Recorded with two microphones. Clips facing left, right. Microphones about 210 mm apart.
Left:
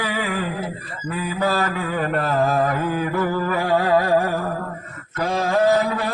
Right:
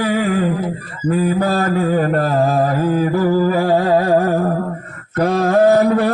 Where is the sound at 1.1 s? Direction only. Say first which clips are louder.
Right 6 dB; 45° right (ahead or behind).